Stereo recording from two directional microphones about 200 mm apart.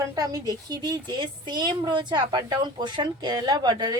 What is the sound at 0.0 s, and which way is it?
A woman's voice, 15° right (ahead or behind).